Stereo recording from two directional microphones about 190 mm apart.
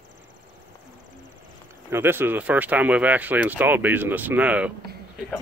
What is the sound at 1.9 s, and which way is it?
Speech, 10° right (ahead or behind).